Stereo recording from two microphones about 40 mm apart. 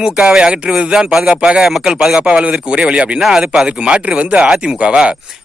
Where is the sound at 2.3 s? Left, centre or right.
Right.